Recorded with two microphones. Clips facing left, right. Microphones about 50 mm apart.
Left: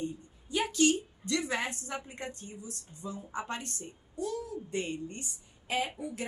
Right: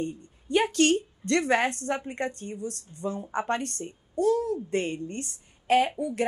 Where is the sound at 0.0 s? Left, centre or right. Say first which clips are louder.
Right 5 dB; right.